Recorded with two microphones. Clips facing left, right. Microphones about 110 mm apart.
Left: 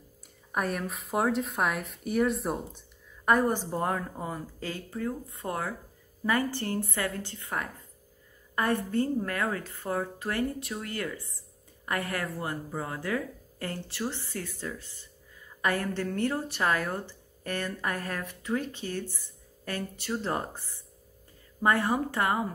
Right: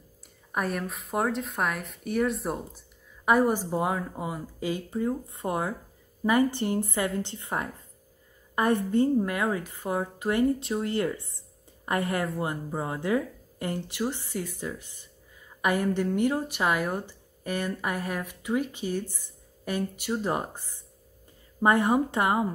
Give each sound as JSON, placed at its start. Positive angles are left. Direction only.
{"t": 0.5, "sound": "speech", "side_deg": 0}
{"t": 3.3, "sound": "a woman's voice", "side_deg": -10}